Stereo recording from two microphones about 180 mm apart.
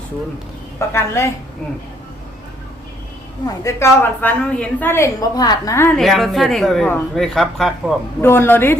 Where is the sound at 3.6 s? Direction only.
15° left (ahead or behind).